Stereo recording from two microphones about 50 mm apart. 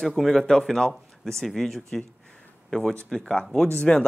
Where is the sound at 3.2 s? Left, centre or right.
Centre.